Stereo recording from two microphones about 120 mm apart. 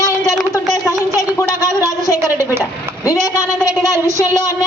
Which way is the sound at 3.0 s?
25° left (ahead or behind).